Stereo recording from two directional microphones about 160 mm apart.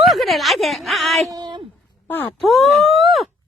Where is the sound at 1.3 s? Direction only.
25° right (ahead or behind).